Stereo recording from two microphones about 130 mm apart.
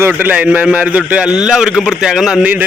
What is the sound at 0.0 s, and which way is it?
A man's voice, 10° right (ahead or behind).